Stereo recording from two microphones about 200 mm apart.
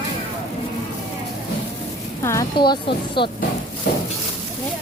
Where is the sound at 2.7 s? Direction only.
25° left (ahead or behind).